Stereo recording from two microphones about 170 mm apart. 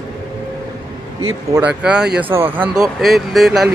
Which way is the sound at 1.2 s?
10° right (ahead or behind).